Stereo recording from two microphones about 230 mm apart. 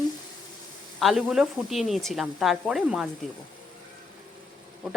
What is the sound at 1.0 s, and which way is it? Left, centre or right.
A woman's voice, centre.